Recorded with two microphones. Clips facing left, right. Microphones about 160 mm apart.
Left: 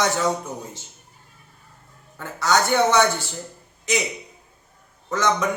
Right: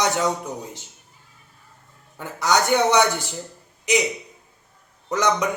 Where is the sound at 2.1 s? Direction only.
15° right (ahead or behind).